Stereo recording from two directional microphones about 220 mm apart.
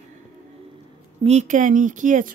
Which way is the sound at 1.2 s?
30° right (ahead or behind).